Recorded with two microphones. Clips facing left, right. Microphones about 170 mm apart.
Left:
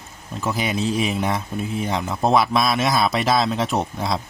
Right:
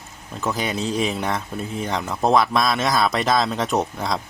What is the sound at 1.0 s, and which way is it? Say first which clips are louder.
A man's voice: left 1 dB; 5° left (ahead or behind).